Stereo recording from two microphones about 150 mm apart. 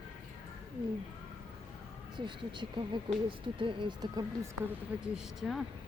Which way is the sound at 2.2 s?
30° right (ahead or behind).